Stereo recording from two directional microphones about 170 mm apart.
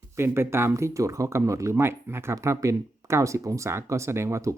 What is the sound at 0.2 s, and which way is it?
Speech, 15° right (ahead or behind).